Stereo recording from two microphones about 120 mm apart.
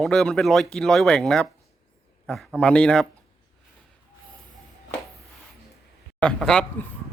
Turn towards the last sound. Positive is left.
turn(degrees=5)  # may be behind; listen again after turning